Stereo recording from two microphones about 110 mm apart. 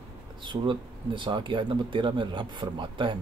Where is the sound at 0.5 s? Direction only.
45° right (ahead or behind).